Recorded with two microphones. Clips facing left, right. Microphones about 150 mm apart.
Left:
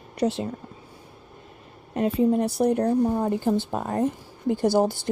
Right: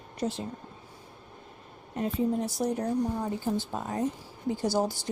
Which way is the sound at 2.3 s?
65° left (ahead or behind).